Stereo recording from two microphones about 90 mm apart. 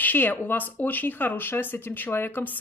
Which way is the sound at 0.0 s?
20° left (ahead or behind).